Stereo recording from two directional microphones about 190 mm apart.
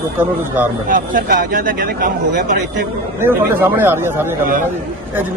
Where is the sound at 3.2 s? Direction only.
10° right (ahead or behind).